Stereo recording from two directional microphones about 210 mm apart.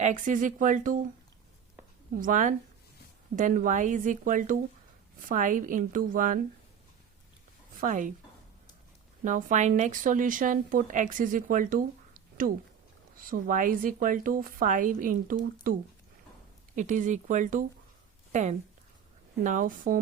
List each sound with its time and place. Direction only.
0.0 s speech: 35° right (ahead or behind)
2.1 s speech: 40° right (ahead or behind)
7.8 s speech: 40° right (ahead or behind)
9.2 s speech: 35° right (ahead or behind)
16.7 s speech: 35° right (ahead or behind)